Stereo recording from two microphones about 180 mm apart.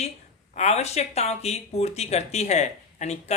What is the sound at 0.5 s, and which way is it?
A woman's voice, 40° left (ahead or behind).